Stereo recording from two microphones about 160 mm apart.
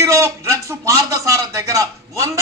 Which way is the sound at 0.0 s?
20° right (ahead or behind).